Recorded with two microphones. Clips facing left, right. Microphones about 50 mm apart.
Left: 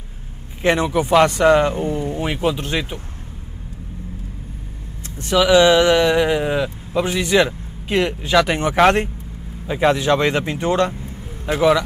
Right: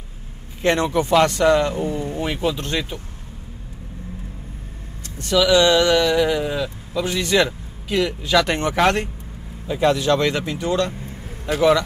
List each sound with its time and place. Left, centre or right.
0.6 s speech: centre
5.0 s speech: left
7.9 s speech: left
8.3 s speech: centre; by 11.0 s left
11.4 s speech: centre